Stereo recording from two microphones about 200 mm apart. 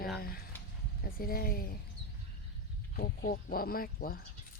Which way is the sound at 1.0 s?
50° left (ahead or behind).